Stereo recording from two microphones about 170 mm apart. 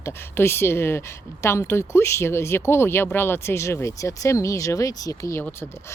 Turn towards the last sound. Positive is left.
turn(degrees=15)  # may be behind; listen again after turning